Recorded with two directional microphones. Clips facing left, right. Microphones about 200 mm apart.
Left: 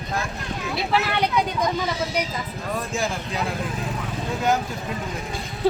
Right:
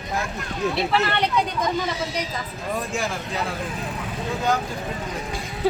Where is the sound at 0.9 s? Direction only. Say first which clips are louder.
Even; 5° left (ahead or behind).